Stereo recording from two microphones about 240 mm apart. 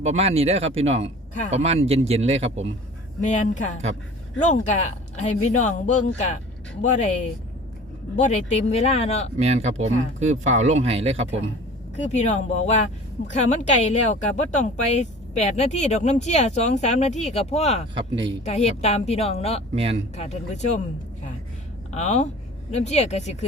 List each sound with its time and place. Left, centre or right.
0.0 s speech: right
3.2 s a woman's voice: left
8.1 s a woman's voice: left
9.4 s speech: right
11.9 s a woman's voice: left
17.9 s speech: right
18.4 s a woman's voice: left
19.7 s speech: right
20.1 s a woman's voice: left
21.9 s a woman's voice: left